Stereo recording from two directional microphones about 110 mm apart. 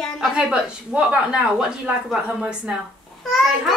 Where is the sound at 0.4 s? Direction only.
10° right (ahead or behind).